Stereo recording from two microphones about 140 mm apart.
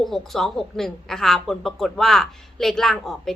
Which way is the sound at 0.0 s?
Centre (ahead or behind).